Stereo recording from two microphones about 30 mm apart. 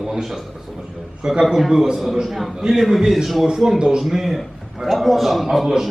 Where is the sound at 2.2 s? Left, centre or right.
Centre.